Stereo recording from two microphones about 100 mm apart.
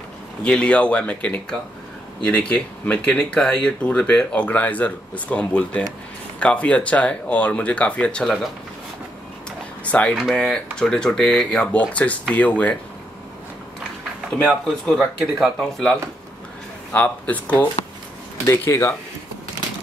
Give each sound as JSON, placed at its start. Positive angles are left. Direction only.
{"t": 0.4, "sound": "speech", "side_deg": 10}
{"t": 9.8, "sound": "speech", "side_deg": 15}
{"t": 10.1, "sound": "speech", "side_deg": 0}
{"t": 14.4, "sound": "speech", "side_deg": 5}
{"t": 16.9, "sound": "speech", "side_deg": 15}
{"t": 18.5, "sound": "speech", "side_deg": 30}